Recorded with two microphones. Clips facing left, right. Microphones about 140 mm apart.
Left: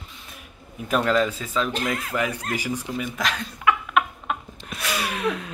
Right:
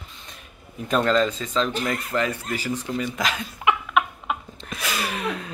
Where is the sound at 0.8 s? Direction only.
5° left (ahead or behind).